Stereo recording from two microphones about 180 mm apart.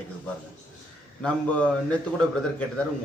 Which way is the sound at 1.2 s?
5° left (ahead or behind).